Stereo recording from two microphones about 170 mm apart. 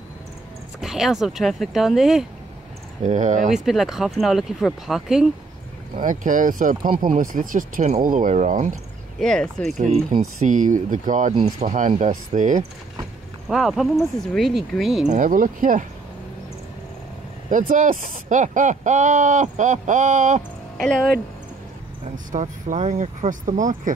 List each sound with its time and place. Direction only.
0.7 s speech: centre (ahead or behind)
3.0 s speech: 45° right (ahead or behind)
3.4 s speech: centre (ahead or behind)
6.0 s speech: 50° right (ahead or behind)
9.2 s speech: 5° left (ahead or behind)
9.8 s speech: 40° right (ahead or behind)
13.5 s speech: centre (ahead or behind)
15.0 s speech: 50° right (ahead or behind)
17.5 s speech: 50° right (ahead or behind)
22.1 s speech: 45° right (ahead or behind)